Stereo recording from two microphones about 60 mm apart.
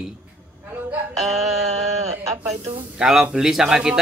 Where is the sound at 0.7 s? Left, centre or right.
Right.